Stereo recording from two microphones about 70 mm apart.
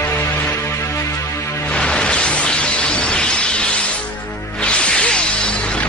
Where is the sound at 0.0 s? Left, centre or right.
Left.